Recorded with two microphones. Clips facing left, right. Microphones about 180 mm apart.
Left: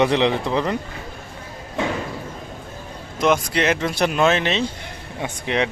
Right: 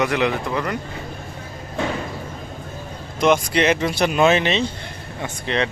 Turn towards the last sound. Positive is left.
turn(degrees=15)  # may be behind; listen again after turning